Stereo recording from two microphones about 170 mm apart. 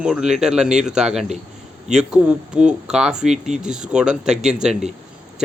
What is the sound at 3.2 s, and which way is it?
Speech, 40° right (ahead or behind).